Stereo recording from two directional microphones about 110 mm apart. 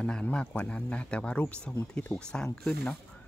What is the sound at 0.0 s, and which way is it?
Speech, 10° left (ahead or behind).